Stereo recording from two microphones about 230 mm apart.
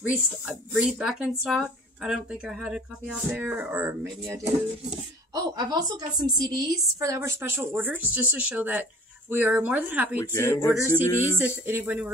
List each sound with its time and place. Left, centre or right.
0.1 s a woman's voice: centre
10.2 s speech: centre
11.3 s a woman's voice: centre